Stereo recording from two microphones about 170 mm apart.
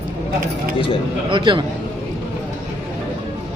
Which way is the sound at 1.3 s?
30° right (ahead or behind).